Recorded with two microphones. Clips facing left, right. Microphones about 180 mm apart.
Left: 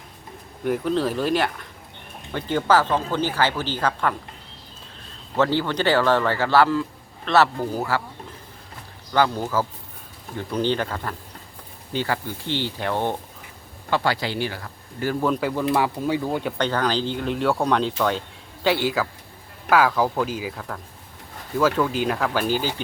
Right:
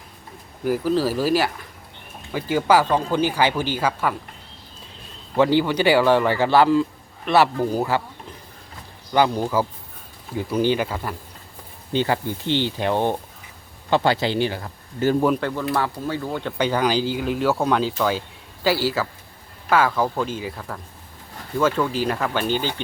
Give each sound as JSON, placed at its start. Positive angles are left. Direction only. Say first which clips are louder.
{"t": 0.6, "sound": "speech", "louder": "right 2 dB", "side_deg": -5}
{"t": 5.4, "sound": "speech", "louder": "right 4 dB", "side_deg": -15}
{"t": 9.1, "sound": "speech", "louder": "right 2 dB", "side_deg": -15}
{"t": 11.9, "sound": "speech", "louder": "right 4 dB", "side_deg": -20}
{"t": 15.4, "sound": "speech", "louder": "left 2 dB", "side_deg": 10}
{"t": 16.6, "sound": "speech", "louder": "right 5 dB", "side_deg": -10}